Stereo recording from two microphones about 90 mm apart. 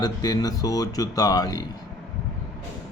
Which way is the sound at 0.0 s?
45° left (ahead or behind).